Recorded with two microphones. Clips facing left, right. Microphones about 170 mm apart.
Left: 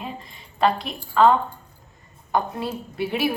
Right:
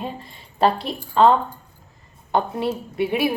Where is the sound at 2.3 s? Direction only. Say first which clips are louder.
Right 3 dB; 25° right (ahead or behind).